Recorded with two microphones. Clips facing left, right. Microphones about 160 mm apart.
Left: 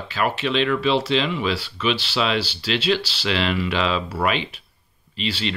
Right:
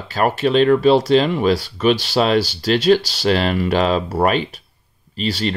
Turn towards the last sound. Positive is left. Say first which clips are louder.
# right 5 dB
turn(degrees=-40)  # may be behind; listen again after turning